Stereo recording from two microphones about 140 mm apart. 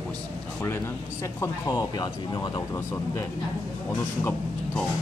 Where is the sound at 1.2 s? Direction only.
25° left (ahead or behind).